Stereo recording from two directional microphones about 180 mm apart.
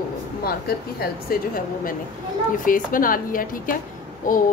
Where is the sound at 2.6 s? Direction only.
50° left (ahead or behind).